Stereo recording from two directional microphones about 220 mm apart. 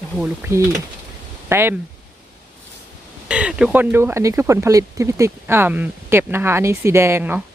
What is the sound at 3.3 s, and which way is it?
Speech, 5° right (ahead or behind).